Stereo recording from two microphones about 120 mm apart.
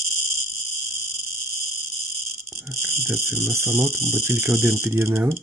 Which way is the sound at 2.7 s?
20° right (ahead or behind).